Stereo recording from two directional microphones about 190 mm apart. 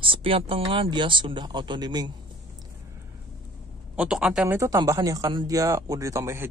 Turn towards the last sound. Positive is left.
turn(degrees=-15)  # may be behind; listen again after turning